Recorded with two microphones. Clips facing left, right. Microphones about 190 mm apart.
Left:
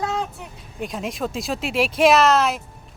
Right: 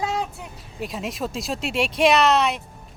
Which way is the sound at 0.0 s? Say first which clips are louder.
Even; 10° right (ahead or behind).